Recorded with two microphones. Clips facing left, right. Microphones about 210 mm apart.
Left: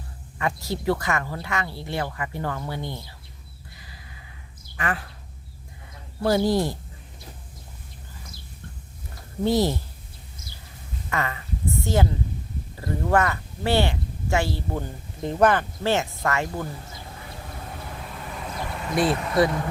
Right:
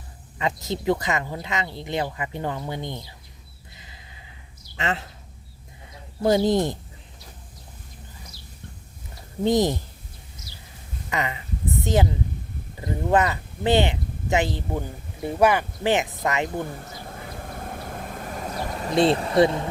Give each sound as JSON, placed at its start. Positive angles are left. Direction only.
{"t": 0.3, "sound": "speech", "side_deg": -20}
{"t": 3.8, "sound": "a sound", "side_deg": -20}
{"t": 4.8, "sound": "speech", "side_deg": -25}
{"t": 6.2, "sound": "speech", "side_deg": -20}
{"t": 9.4, "sound": "speech", "side_deg": -20}
{"t": 11.1, "sound": "a sound", "side_deg": -20}
{"t": 12.8, "sound": "speech", "side_deg": -20}
{"t": 16.8, "sound": "vehicle", "side_deg": -50}
{"t": 18.9, "sound": "speech", "side_deg": -30}